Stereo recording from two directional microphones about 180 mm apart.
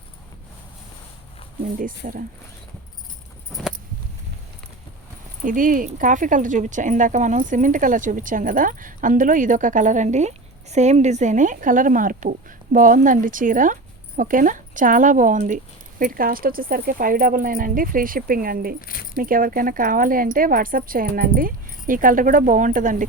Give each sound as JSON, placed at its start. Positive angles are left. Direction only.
{"t": 1.6, "sound": "speech", "side_deg": -50}
{"t": 5.5, "sound": "speech", "side_deg": -50}